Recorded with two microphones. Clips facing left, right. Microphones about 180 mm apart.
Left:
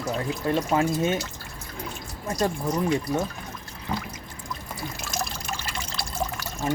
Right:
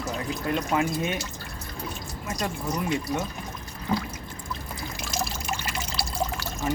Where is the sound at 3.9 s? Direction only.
Centre (ahead or behind).